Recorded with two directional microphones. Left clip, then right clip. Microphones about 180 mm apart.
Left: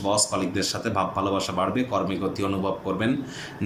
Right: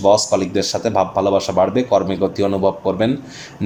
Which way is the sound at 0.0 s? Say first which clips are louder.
Right 10 dB; 30° right (ahead or behind).